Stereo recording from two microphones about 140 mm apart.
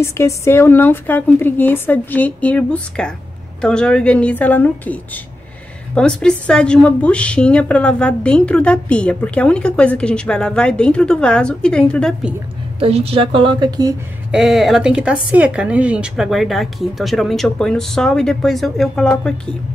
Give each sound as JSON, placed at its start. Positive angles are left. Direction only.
{"t": 0.0, "sound": "a woman's voice", "side_deg": 20}
{"t": 12.7, "sound": "speech", "side_deg": -45}
{"t": 14.3, "sound": "speech", "side_deg": 0}